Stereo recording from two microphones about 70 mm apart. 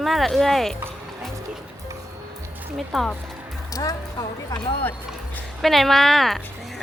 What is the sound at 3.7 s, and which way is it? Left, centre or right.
Speech, left.